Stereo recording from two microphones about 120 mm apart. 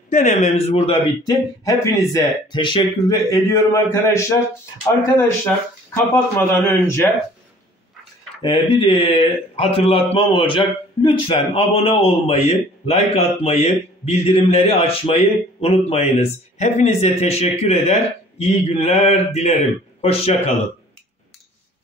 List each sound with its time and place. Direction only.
0.1 s a man's voice: 80° left; by 1.1 s 55° left (ahead or behind)
1.2 s a man's voice: 30° left (ahead or behind)
2.1 s speech: 40° left (ahead or behind)
3.3 s a man's voice: 30° left (ahead or behind)
5.9 s a man's voice: 20° left (ahead or behind)
8.4 s a man's voice: 40° left (ahead or behind)
11.3 s a man's voice: 55° left (ahead or behind)